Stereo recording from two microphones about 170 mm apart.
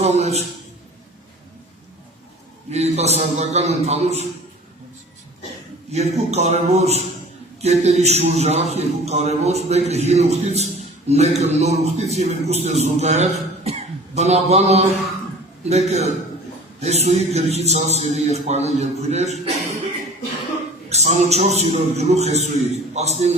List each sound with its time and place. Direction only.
0.0 s a man's voice: 40° right (ahead or behind)
2.6 s a man's voice: 40° right (ahead or behind)
5.9 s a man's voice: 40° right (ahead or behind)
20.9 s a man's voice: 40° right (ahead or behind)